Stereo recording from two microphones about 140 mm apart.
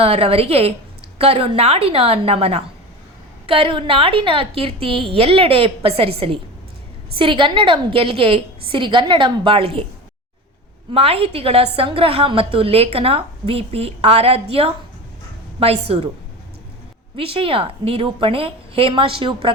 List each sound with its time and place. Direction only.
0.0 s a woman's voice: 45° right (ahead or behind)
10.9 s a woman's voice: 45° right (ahead or behind)
17.2 s a woman's voice: 40° right (ahead or behind)